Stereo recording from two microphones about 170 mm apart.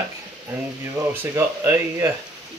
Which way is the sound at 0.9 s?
15° right (ahead or behind).